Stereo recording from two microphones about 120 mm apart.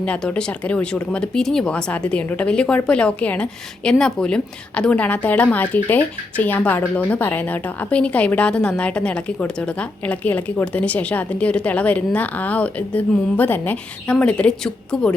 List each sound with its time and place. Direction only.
0.0 s speech: 10° left (ahead or behind)